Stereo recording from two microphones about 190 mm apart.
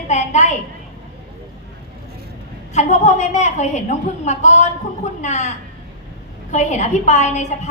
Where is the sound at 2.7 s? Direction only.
40° left (ahead or behind).